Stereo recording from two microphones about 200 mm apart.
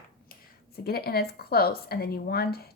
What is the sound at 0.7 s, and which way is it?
Speech, 50° left (ahead or behind).